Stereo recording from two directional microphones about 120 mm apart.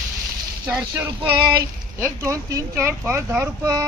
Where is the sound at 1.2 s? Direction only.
45° right (ahead or behind).